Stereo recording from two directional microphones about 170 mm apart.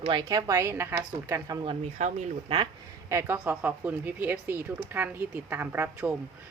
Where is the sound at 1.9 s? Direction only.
45° right (ahead or behind).